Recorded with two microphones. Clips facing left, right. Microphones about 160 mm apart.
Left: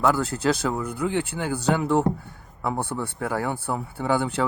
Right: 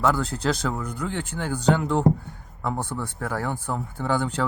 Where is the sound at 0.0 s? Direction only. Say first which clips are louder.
Left 1 dB; 5° left (ahead or behind).